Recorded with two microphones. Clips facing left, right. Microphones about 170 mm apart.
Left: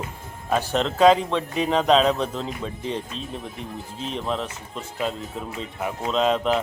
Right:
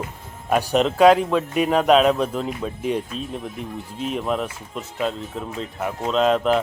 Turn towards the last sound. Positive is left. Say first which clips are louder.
# right 3 dB
turn(degrees=0)  # may be behind; listen again after turning